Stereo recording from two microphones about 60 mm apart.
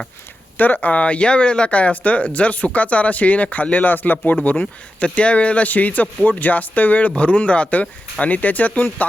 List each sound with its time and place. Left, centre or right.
0.5 s speech: left